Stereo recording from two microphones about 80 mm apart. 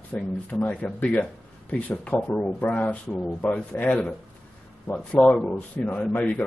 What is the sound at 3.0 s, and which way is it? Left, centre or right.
Speech, centre.